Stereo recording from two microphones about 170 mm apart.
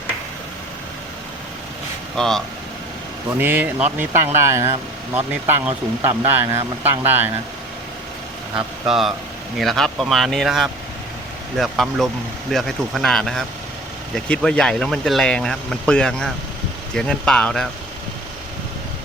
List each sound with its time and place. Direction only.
2.1 s speech: centre (ahead or behind)
3.3 s speech: 10° right (ahead or behind)
8.5 s speech: centre (ahead or behind)